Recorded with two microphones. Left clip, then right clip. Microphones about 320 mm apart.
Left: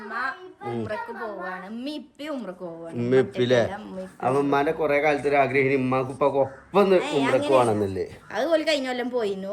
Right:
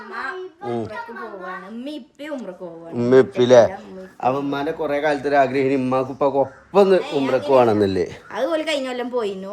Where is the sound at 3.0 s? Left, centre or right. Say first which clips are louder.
Right 7 dB; centre.